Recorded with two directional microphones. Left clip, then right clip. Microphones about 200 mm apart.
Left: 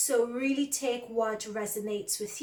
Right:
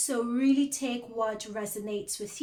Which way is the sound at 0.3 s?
40° right (ahead or behind).